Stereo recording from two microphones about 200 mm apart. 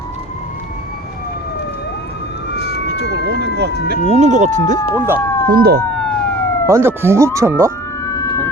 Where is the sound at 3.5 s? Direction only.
55° right (ahead or behind).